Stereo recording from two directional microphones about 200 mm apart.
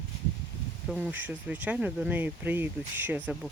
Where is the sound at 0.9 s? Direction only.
5° right (ahead or behind).